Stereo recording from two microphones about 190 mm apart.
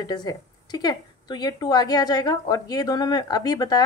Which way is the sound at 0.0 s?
20° left (ahead or behind).